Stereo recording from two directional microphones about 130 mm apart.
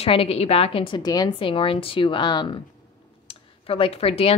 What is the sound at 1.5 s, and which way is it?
Speech, 45° left (ahead or behind).